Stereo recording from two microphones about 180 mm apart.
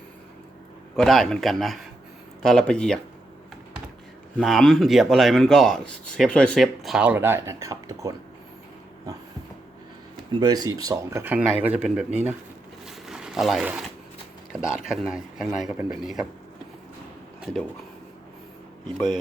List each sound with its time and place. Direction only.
0.9 s speech: centre (ahead or behind)
4.4 s speech: 5° left (ahead or behind); by 8.1 s 20° right (ahead or behind)
10.4 s a man's voice: 20° right (ahead or behind); by 12.3 s 5° right (ahead or behind)
12.8 s a sound: 5° right (ahead or behind)
14.6 s speech: 5° right (ahead or behind)